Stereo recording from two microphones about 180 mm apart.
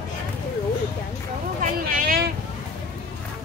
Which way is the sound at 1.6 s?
55° right (ahead or behind).